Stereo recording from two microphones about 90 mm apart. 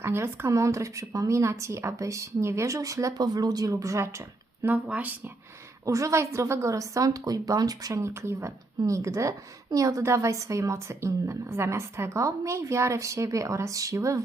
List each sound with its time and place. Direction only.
0.0 s a woman's voice: 30° right (ahead or behind)
4.9 s speech: 20° right (ahead or behind)
5.8 s a woman's voice: 35° right (ahead or behind)